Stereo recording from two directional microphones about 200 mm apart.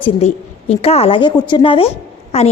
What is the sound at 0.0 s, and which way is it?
A woman's voice, 30° left (ahead or behind).